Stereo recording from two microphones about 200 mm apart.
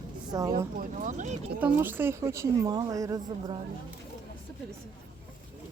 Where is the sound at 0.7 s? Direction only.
40° right (ahead or behind).